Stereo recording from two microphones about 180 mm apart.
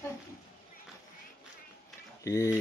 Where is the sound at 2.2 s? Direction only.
15° left (ahead or behind).